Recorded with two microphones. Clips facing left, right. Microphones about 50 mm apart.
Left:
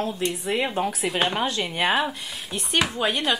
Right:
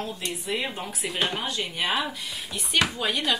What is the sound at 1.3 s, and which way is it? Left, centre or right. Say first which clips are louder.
A woman's voice: left 5 dB; left.